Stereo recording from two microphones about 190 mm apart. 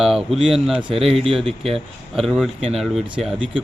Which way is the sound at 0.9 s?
30° right (ahead or behind).